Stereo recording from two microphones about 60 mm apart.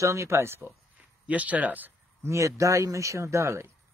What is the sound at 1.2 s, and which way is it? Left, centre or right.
Speech, right.